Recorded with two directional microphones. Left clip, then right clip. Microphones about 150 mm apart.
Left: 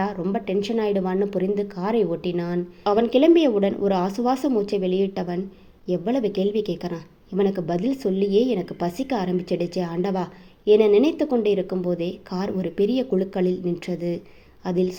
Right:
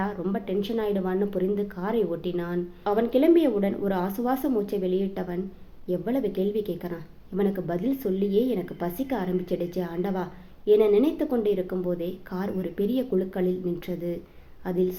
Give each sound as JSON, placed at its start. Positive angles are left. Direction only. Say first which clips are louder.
{"t": 0.0, "sound": "speech", "louder": "left 4 dB", "side_deg": 40}